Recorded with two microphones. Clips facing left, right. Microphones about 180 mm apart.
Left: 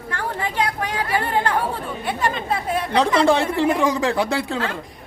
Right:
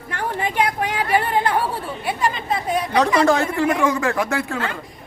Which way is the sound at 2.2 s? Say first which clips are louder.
Even; centre (ahead or behind).